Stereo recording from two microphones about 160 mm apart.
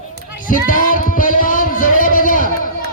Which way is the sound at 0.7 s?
60° left (ahead or behind).